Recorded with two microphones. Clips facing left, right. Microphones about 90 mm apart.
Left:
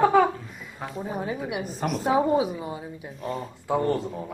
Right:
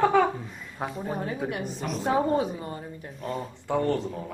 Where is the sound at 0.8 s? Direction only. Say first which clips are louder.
Left 1 dB; 5° left (ahead or behind).